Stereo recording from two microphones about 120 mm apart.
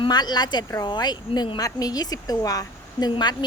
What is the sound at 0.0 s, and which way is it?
Speech, 35° left (ahead or behind).